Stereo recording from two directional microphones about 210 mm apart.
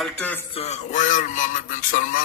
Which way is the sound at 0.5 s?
30° left (ahead or behind).